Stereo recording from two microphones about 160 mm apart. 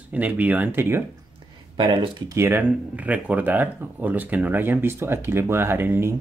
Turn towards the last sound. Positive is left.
turn(degrees=-15)  # may be behind; listen again after turning